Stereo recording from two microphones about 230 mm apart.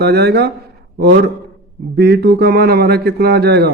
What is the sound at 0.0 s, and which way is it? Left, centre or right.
A man's voice, right.